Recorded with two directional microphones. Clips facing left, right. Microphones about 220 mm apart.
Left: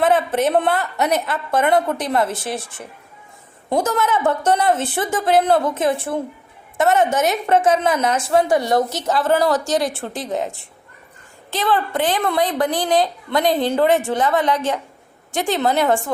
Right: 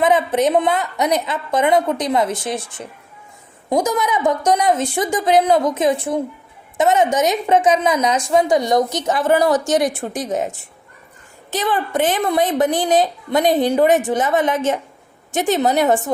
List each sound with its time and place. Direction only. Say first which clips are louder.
0.0 s a woman's voice: right 1 dB; 15° right (ahead or behind)